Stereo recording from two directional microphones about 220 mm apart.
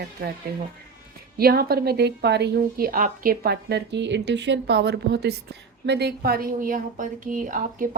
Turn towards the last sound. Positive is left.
turn(degrees=-40)  # may be behind; listen again after turning